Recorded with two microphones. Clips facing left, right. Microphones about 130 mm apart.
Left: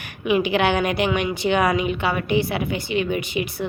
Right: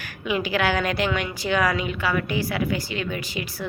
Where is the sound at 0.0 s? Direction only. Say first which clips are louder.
Left 5 dB; 20° left (ahead or behind).